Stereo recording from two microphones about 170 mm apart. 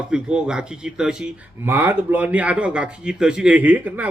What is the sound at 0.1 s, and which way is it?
Speech, 5° right (ahead or behind).